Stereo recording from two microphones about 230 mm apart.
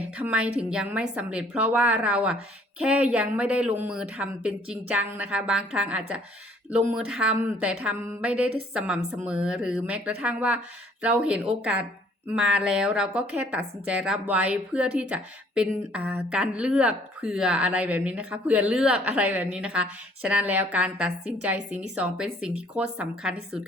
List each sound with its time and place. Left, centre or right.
0.2 s a woman's voice: centre